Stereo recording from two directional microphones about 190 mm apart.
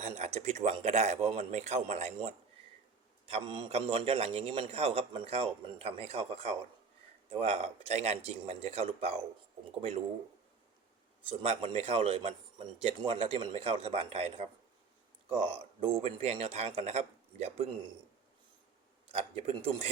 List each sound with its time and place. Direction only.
0.0 s a man's voice: 35° right (ahead or behind)
11.3 s a man's voice: 30° right (ahead or behind)
19.0 s a man's voice: 30° right (ahead or behind)